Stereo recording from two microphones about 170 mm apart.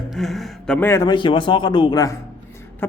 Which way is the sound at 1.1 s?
30° left (ahead or behind).